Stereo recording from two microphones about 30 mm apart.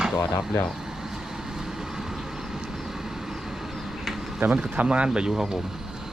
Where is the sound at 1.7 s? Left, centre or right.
Centre.